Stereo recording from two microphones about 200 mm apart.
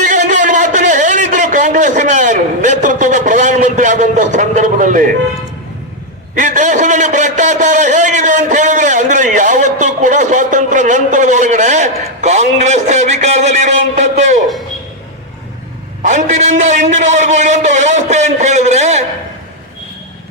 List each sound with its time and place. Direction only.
0.0 s a sound: 40° right (ahead or behind)
6.3 s a man's voice: 40° right (ahead or behind)
16.0 s a man's voice: 35° right (ahead or behind)